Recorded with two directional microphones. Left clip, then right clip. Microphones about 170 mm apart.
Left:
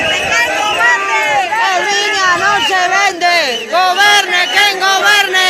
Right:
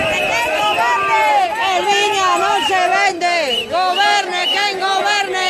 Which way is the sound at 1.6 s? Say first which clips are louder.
Left 4 dB; 5° right (ahead or behind).